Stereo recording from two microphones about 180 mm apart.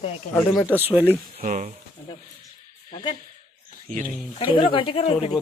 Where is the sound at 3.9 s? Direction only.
50° right (ahead or behind).